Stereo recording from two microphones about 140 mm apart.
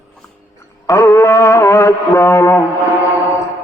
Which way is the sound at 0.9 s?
20° left (ahead or behind).